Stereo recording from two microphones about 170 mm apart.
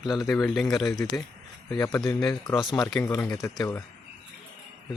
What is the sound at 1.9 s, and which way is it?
Speech, 5° left (ahead or behind).